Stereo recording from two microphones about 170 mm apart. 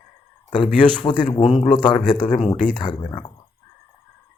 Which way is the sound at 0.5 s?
30° left (ahead or behind).